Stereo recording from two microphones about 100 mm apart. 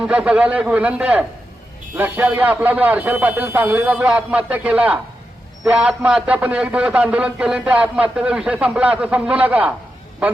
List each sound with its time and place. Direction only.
0.0 s a man's voice: 10° right (ahead or behind)